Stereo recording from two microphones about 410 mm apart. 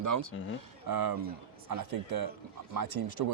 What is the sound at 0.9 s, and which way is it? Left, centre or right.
A man's voice, right.